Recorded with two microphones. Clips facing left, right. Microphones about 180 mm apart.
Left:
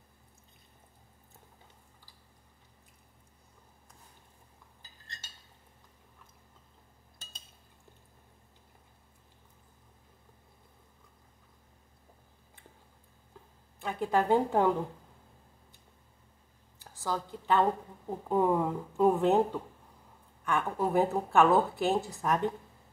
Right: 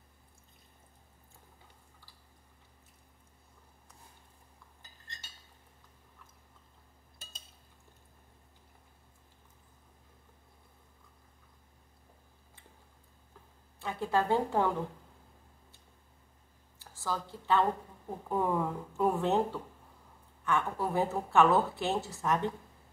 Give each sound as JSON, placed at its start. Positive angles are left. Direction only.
{"t": 13.7, "sound": "a woman's voice", "side_deg": 15}
{"t": 16.7, "sound": "a woman's voice", "side_deg": 20}